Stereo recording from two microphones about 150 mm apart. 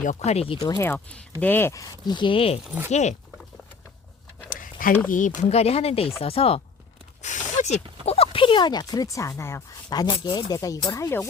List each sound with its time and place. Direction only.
0.0 s speech: 50° left (ahead or behind)
0.6 s speech: 20° left (ahead or behind); by 2.6 s 35° left (ahead or behind)
2.6 s speech: 10° right (ahead or behind)
2.9 s speech: 50° left (ahead or behind)
4.4 s a sound: 65° left (ahead or behind)
5.1 s speech: 50° left (ahead or behind)
7.2 s a sound: 55° left (ahead or behind)
8.0 s speech: 40° left (ahead or behind); by 11.3 s 20° left (ahead or behind)